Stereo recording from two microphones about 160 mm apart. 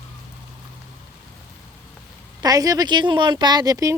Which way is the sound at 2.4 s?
25° right (ahead or behind).